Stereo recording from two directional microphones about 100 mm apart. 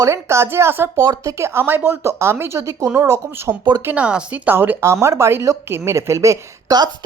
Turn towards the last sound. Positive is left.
turn(degrees=-30)  # may be behind; listen again after turning